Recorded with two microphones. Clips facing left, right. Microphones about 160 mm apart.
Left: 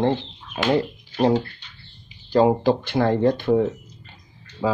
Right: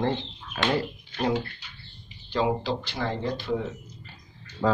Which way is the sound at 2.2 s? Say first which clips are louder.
Left 9 dB; 45° left (ahead or behind).